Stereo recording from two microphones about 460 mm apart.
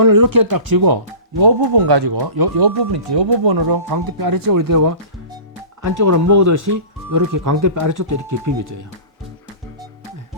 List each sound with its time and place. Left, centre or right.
0.0 s speech: right
6.0 s speech: right